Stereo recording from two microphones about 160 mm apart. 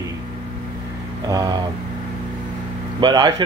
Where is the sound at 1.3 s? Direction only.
25° right (ahead or behind).